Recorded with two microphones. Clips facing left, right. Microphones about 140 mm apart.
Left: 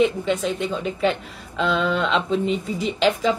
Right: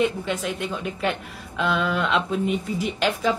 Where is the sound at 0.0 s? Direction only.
5° right (ahead or behind).